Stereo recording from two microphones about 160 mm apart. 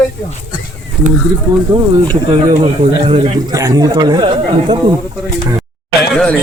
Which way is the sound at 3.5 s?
20° right (ahead or behind).